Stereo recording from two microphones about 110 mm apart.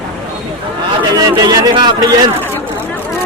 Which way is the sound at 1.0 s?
40° right (ahead or behind).